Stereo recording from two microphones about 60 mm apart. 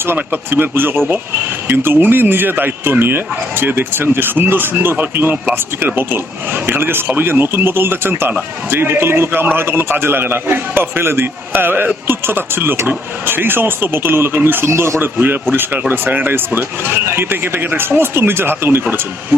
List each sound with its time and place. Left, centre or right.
0.2 s speech: right
15.9 s speech: right